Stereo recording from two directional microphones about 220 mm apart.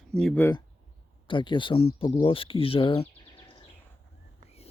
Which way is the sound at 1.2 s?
20° left (ahead or behind).